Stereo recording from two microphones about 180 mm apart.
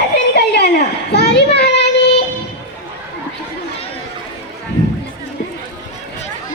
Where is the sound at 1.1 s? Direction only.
65° left (ahead or behind).